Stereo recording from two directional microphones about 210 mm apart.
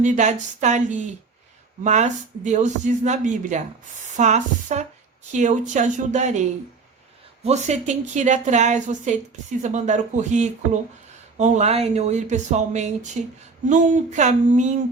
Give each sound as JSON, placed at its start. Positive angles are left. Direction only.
{"t": 0.0, "sound": "a woman's voice", "side_deg": -35}